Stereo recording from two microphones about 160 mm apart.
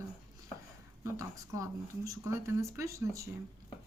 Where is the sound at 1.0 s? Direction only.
20° right (ahead or behind).